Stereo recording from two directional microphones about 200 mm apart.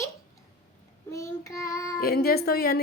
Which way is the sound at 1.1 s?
15° left (ahead or behind).